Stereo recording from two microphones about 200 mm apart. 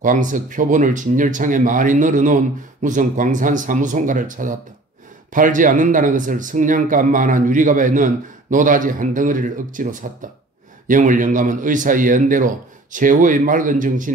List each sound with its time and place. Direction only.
0.0 s speech: 40° right (ahead or behind)